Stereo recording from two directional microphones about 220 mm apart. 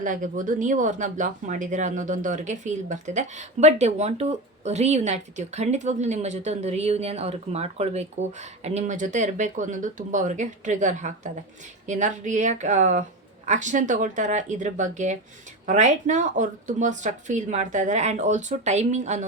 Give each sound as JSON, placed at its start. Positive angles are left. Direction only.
{"t": 0.0, "sound": "speech", "side_deg": -35}